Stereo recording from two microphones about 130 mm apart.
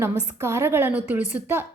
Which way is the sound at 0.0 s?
20° right (ahead or behind).